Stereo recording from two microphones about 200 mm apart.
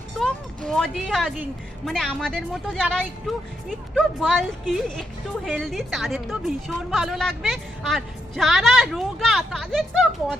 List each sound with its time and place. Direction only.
0.2 s a woman's voice: centre (ahead or behind)